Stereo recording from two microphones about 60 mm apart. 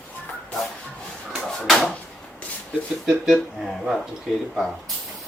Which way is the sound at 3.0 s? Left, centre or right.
Centre.